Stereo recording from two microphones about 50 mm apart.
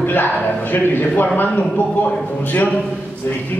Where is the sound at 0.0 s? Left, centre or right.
Left.